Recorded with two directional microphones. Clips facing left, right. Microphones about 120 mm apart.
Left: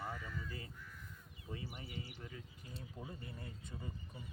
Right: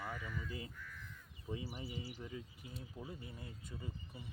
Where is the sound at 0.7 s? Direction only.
20° left (ahead or behind).